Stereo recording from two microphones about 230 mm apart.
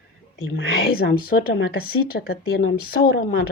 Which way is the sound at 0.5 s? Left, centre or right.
Left.